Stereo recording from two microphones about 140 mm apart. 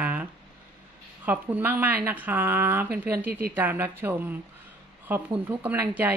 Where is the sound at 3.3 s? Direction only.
90° right.